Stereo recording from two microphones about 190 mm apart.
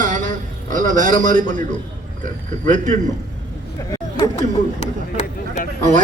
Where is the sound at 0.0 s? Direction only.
40° right (ahead or behind).